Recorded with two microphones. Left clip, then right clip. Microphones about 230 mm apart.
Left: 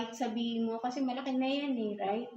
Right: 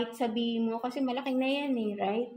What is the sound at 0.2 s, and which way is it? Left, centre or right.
A woman's voice, right.